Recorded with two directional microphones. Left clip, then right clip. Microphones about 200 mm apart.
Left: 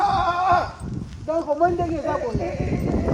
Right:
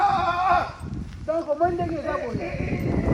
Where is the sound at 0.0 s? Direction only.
55° left (ahead or behind).